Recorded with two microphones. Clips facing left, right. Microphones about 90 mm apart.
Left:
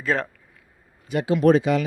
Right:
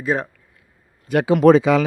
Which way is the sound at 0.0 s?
15° right (ahead or behind).